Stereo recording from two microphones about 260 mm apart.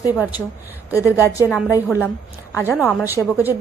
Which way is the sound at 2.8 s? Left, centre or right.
Centre.